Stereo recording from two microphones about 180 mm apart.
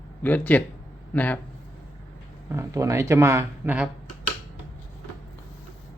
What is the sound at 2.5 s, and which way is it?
Speech, 15° right (ahead or behind).